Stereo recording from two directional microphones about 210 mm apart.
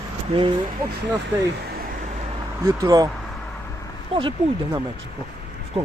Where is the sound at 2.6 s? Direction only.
15° right (ahead or behind).